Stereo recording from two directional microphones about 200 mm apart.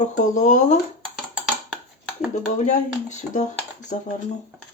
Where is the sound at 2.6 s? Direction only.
35° left (ahead or behind).